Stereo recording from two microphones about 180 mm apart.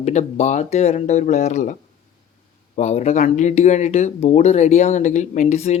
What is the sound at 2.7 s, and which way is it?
Speech, 40° left (ahead or behind).